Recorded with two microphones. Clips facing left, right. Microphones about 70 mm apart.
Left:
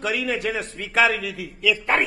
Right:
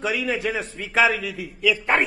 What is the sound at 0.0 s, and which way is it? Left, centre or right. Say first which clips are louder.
A man's voice: even; centre.